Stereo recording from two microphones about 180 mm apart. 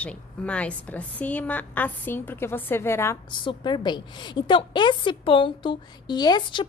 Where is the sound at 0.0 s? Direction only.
5° left (ahead or behind).